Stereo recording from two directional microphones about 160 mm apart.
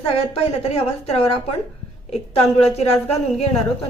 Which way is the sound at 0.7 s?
40° left (ahead or behind).